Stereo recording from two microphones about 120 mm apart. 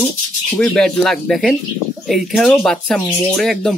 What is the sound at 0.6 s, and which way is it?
Speech, 5° left (ahead or behind).